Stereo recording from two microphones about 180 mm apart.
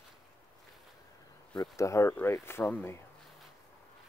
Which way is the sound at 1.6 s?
15° left (ahead or behind).